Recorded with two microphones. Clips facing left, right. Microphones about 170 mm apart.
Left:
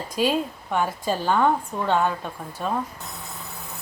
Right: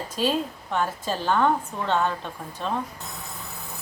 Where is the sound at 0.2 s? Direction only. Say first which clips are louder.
Left 2 dB; 10° left (ahead or behind).